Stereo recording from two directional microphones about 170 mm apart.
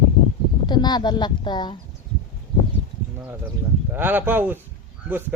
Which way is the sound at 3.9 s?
10° right (ahead or behind).